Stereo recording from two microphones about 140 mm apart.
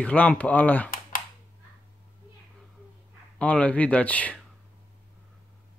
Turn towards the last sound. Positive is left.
turn(degrees=10)  # may be behind; listen again after turning